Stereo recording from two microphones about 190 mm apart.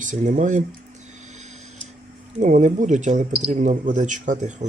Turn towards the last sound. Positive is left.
turn(degrees=-40)  # may be behind; listen again after turning